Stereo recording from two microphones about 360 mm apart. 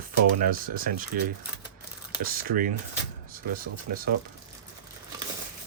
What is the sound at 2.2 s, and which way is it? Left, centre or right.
Speech, right.